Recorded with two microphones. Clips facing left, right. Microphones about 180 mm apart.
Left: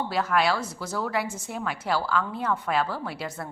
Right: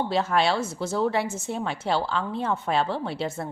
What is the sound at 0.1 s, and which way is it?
Speech, 25° right (ahead or behind).